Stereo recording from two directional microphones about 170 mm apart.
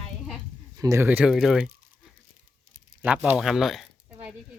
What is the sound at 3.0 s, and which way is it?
Speech, 10° right (ahead or behind).